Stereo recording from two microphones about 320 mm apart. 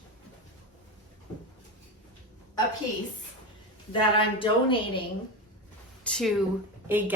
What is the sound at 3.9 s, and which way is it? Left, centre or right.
Speech, centre.